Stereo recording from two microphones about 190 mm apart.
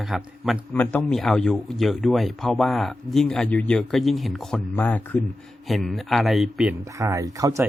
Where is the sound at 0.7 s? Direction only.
10° left (ahead or behind).